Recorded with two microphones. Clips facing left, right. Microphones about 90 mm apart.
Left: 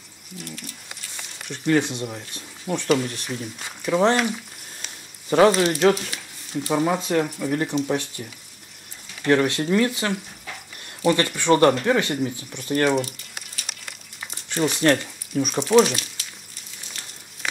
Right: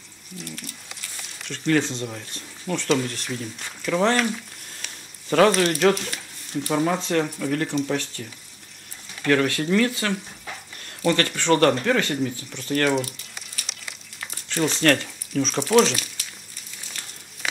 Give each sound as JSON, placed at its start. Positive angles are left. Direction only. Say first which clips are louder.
{"t": 1.5, "sound": "speech", "louder": "left 1 dB", "side_deg": 15}
{"t": 5.3, "sound": "speech", "louder": "left 1 dB", "side_deg": 15}
{"t": 13.7, "sound": "crumpling", "louder": "left 2 dB", "side_deg": 45}
{"t": 14.7, "sound": "speech", "louder": "left 1 dB", "side_deg": 15}